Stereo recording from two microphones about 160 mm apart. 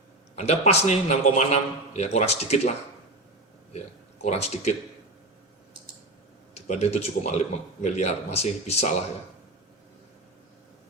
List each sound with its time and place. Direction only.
0.3 s a man's voice: 45° left (ahead or behind)
6.5 s a man's voice: 45° left (ahead or behind)